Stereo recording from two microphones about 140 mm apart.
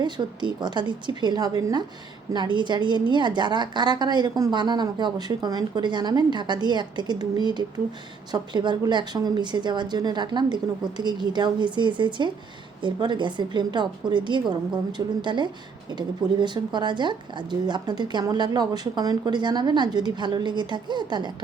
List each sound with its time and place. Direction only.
0.0 s speech: 30° right (ahead or behind)